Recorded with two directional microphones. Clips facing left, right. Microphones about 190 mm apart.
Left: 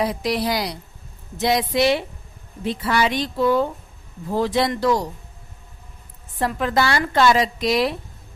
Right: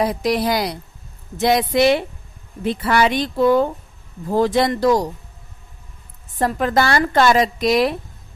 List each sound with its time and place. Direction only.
0.0 s a woman's voice: 45° right (ahead or behind)
6.4 s a woman's voice: 45° right (ahead or behind)